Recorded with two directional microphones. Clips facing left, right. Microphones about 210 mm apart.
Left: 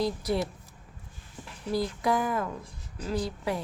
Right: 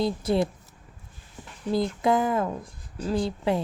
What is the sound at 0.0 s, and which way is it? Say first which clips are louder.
Speech: right 4 dB; 25° right (ahead or behind).